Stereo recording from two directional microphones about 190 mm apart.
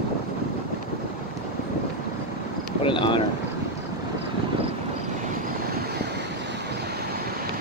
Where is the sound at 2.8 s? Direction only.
25° left (ahead or behind).